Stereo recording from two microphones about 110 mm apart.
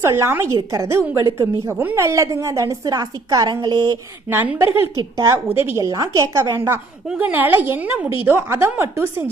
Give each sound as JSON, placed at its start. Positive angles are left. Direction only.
{"t": 0.0, "sound": "a woman's voice", "side_deg": -25}
{"t": 4.3, "sound": "a woman's voice", "side_deg": -20}
{"t": 5.8, "sound": "a woman's voice", "side_deg": -30}